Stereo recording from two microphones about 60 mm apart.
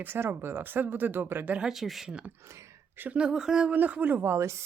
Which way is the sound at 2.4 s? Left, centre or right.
Right.